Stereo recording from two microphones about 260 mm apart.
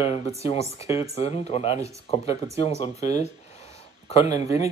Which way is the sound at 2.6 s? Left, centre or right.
Left.